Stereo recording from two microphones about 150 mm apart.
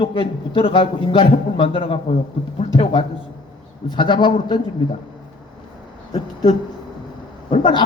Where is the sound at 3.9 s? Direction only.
30° left (ahead or behind).